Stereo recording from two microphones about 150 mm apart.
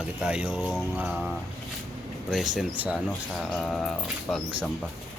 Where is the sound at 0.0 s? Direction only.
5° right (ahead or behind).